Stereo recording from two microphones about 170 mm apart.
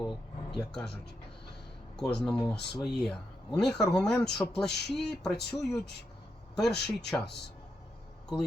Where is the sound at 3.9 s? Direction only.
5° left (ahead or behind).